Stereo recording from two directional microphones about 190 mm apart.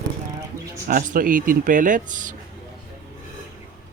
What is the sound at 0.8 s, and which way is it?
Speech, 50° right (ahead or behind).